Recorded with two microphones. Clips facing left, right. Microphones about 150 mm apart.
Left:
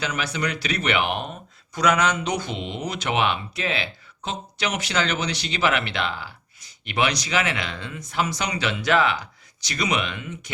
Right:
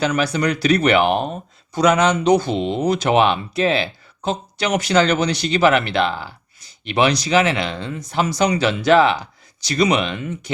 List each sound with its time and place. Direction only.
0.0 s speech: 40° right (ahead or behind)